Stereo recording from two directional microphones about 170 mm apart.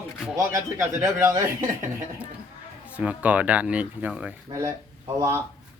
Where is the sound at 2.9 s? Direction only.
10° right (ahead or behind).